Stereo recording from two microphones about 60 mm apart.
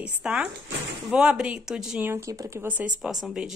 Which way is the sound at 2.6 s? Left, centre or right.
Right.